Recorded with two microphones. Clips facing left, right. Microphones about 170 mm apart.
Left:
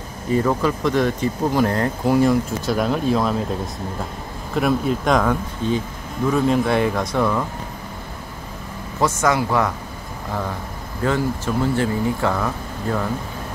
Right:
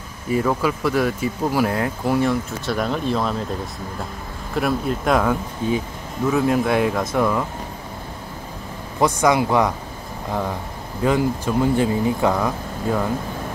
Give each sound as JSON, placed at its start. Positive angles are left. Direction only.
{"t": 0.3, "sound": "speech", "side_deg": -5}
{"t": 4.6, "sound": "speech", "side_deg": 0}
{"t": 9.0, "sound": "speech", "side_deg": -15}
{"t": 11.0, "sound": "speech", "side_deg": -15}